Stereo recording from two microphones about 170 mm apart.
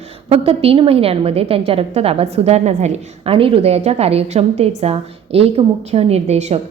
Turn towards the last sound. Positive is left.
turn(degrees=-40)  # may be behind; listen again after turning